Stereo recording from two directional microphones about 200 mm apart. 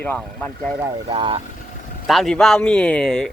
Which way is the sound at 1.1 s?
25° right (ahead or behind).